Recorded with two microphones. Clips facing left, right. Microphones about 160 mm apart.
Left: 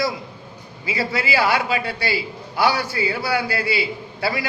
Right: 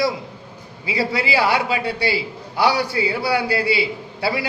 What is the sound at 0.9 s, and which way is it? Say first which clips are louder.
A man's voice: right 2 dB; 30° right (ahead or behind).